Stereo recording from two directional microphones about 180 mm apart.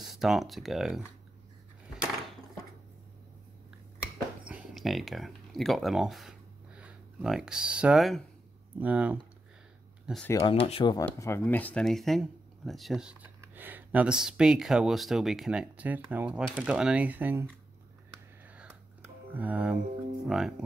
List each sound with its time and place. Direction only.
0.0 s speech: centre (ahead or behind)
4.5 s speech: 5° right (ahead or behind)
10.4 s speech: 30° left (ahead or behind)
11.1 s speech: 15° left (ahead or behind); by 17.5 s 10° right (ahead or behind)
18.5 s whispering: 10° right (ahead or behind)
19.3 s speech: 10° right (ahead or behind)